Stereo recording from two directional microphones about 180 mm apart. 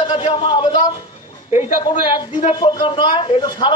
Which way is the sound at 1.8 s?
25° left (ahead or behind).